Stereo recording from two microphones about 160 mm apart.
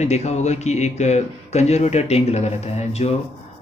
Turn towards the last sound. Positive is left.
turn(degrees=40)  # may be behind; listen again after turning